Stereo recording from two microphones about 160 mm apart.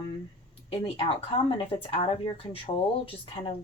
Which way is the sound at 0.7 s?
35° left (ahead or behind).